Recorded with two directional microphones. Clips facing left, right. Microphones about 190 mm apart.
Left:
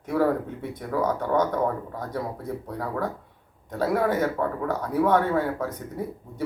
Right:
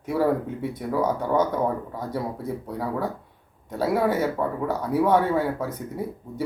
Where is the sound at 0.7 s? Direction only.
10° right (ahead or behind).